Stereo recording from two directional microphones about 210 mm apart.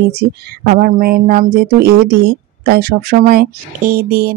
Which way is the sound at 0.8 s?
45° right (ahead or behind).